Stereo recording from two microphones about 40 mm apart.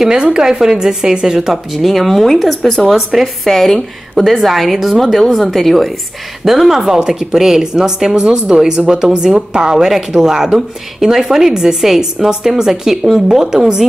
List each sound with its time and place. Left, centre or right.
0.0 s a woman's voice: centre
2.9 s a woman's voice: centre